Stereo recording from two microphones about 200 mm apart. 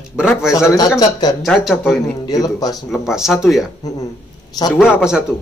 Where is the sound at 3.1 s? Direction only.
Centre (ahead or behind).